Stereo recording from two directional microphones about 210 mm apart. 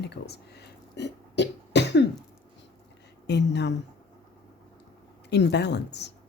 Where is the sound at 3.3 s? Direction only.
55° left (ahead or behind).